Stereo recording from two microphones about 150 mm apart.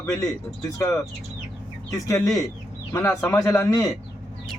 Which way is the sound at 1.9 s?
20° left (ahead or behind).